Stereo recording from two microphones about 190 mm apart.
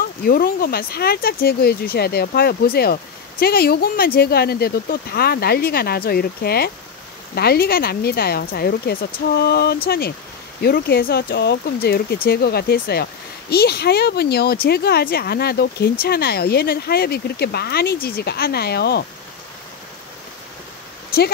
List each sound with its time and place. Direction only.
0.2 s speech: 55° left (ahead or behind)